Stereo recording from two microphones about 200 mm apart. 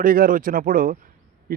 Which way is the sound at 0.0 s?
45° right (ahead or behind).